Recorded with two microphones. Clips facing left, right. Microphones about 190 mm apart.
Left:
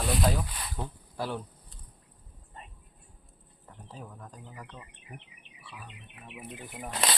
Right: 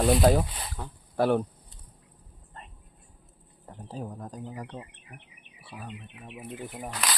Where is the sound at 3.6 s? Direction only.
40° right (ahead or behind).